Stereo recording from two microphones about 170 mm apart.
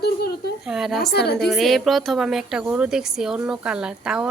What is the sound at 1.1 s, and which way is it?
Speech, 75° left (ahead or behind).